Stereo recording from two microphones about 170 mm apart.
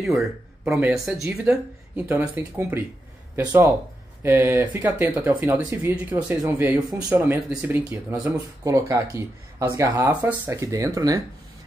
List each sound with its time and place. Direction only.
0.0 s a woman's voice: centre (ahead or behind); by 11.2 s 20° right (ahead or behind)